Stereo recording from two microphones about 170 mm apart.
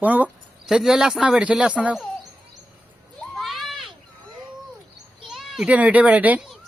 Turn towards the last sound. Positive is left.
turn(degrees=-10)  # may be behind; listen again after turning